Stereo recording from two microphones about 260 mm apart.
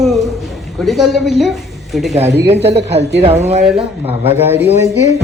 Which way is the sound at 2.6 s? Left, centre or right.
Right.